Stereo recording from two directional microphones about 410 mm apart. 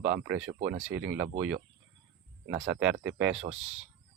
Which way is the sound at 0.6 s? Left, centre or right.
Centre.